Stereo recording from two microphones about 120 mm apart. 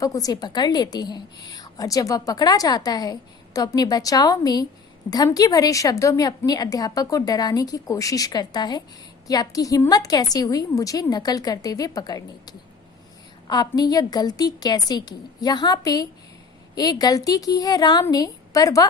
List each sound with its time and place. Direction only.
0.0 s a woman's voice: 30° left (ahead or behind)